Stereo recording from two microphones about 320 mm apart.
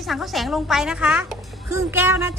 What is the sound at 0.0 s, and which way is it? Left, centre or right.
A woman's voice, centre.